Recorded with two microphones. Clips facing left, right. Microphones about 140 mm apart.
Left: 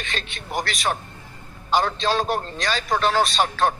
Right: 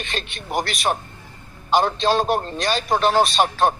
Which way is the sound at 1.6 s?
20° right (ahead or behind).